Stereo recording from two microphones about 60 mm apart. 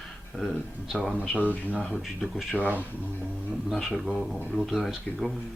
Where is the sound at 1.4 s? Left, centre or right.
Left.